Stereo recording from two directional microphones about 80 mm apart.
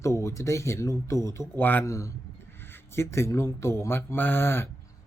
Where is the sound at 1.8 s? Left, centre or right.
Left.